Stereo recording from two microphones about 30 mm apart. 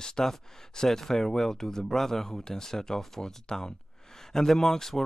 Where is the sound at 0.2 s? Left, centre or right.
Centre.